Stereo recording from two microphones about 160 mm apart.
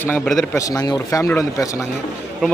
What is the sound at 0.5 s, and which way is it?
A man's voice, 20° left (ahead or behind).